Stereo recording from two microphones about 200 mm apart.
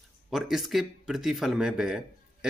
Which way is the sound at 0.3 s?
Centre (ahead or behind).